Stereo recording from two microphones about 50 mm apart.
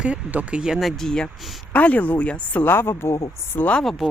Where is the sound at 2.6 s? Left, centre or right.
Left.